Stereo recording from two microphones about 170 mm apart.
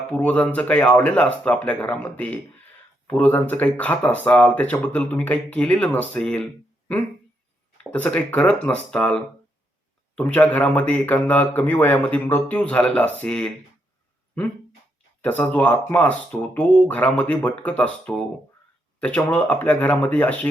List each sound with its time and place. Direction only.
0.1 s speech: 5° left (ahead or behind)
15.2 s speech: 10° left (ahead or behind)